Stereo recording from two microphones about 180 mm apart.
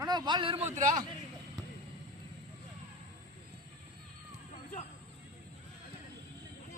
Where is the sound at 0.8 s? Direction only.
45° right (ahead or behind).